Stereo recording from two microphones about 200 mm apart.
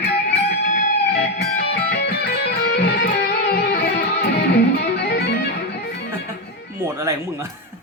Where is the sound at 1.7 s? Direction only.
55° left (ahead or behind).